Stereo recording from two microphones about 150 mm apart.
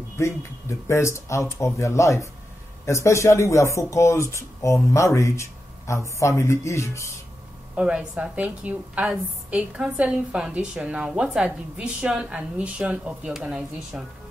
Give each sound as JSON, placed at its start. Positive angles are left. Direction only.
{"t": 0.2, "sound": "speech", "side_deg": 20}
{"t": 7.7, "sound": "a woman's voice", "side_deg": -5}